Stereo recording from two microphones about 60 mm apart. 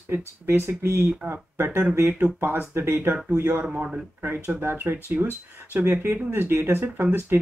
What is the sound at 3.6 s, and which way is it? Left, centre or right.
Speech, centre.